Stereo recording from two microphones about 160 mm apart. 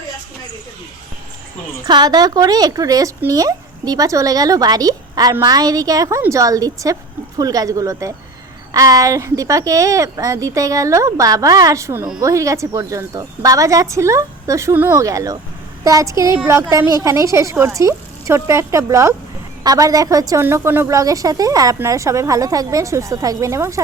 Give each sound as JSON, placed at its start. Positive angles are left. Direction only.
{"t": 1.9, "sound": "a woman's voice", "side_deg": -25}